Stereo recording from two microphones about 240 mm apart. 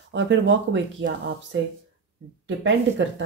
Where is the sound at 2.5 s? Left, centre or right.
Right.